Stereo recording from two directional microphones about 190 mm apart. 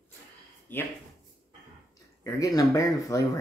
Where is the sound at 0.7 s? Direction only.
10° left (ahead or behind).